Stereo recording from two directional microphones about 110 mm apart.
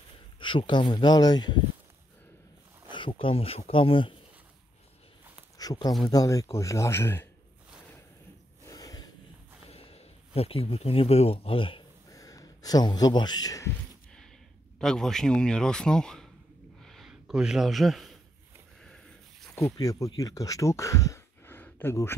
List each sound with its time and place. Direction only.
0.4 s speech: 50° left (ahead or behind)
2.9 s speech: 50° left (ahead or behind)
5.6 s speech: 35° left (ahead or behind)
8.6 s a sound: 35° left (ahead or behind)
9.7 s speech: 65° left (ahead or behind)
12.1 s a man's voice: 30° left (ahead or behind)
14.8 s a man's voice: 5° left (ahead or behind)
16.8 s a sound: centre (ahead or behind)
17.1 s speech: 5° right (ahead or behind)
18.8 s a sound: 5° left (ahead or behind)
19.6 s speech: 30° left (ahead or behind)
21.5 s a sound: 20° left (ahead or behind)